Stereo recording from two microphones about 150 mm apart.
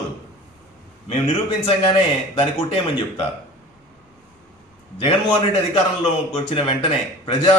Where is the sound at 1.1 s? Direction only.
40° left (ahead or behind).